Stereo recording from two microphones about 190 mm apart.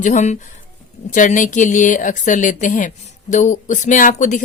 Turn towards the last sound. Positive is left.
turn(degrees=40)  # may be behind; listen again after turning